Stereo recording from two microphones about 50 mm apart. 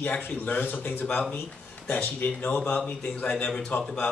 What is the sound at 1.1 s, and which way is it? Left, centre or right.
Speech, centre.